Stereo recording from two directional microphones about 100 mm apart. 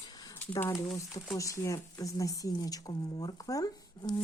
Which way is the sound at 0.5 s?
25° left (ahead or behind).